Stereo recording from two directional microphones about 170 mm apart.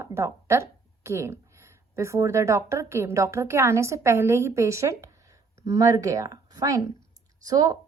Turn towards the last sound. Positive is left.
turn(degrees=-20)  # may be behind; listen again after turning